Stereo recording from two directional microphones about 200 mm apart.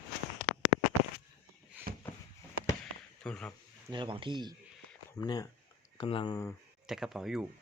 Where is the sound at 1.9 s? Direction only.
45° right (ahead or behind).